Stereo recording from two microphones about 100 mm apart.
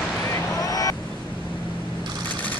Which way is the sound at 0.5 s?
35° left (ahead or behind).